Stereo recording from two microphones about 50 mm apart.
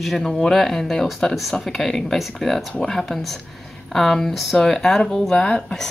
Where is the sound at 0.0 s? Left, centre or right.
Centre.